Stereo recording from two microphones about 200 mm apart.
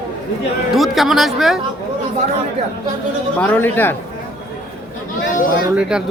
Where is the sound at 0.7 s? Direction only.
Centre (ahead or behind).